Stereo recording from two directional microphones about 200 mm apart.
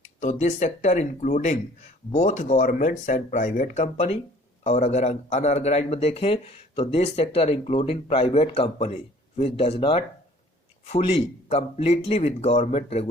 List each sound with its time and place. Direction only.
0.0 s speech: 35° left (ahead or behind)